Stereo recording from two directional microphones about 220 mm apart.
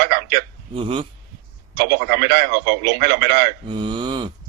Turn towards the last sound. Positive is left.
turn(degrees=-20)  # may be behind; listen again after turning